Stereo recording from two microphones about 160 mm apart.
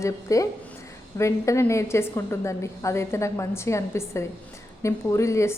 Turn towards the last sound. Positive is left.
turn(degrees=20)  # may be behind; listen again after turning